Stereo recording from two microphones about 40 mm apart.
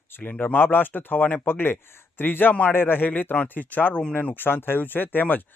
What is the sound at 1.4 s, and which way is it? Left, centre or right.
Speech, left.